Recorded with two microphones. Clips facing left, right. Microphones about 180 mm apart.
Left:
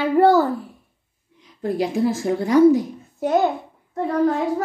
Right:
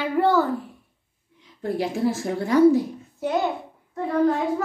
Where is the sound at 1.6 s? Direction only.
20° left (ahead or behind).